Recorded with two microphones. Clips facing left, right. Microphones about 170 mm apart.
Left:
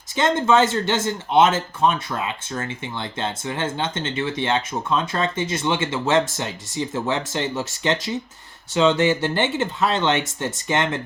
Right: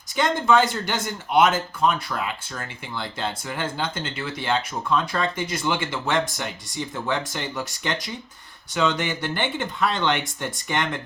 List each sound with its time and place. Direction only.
0.2 s speech: 25° left (ahead or behind)